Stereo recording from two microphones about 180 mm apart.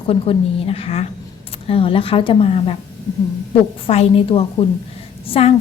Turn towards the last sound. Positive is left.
turn(degrees=35)  # may be behind; listen again after turning